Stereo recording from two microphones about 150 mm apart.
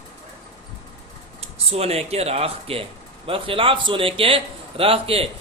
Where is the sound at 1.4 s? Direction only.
45° right (ahead or behind).